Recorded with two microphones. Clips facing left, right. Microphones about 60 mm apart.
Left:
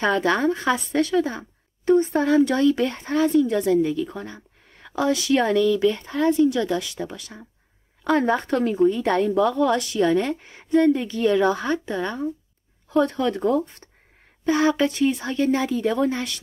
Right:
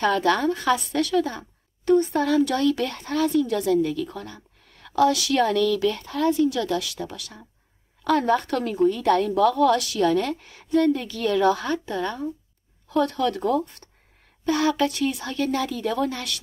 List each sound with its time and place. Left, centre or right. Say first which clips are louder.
0.0 s speech: even; left